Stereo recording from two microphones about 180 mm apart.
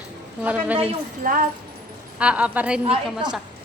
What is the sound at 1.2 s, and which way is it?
Speech, 50° right (ahead or behind).